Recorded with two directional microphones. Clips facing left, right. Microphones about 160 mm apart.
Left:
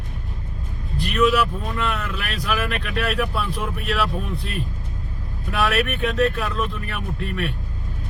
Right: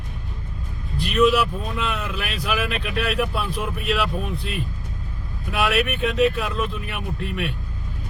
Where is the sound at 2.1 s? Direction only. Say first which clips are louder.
Even; 5° right (ahead or behind).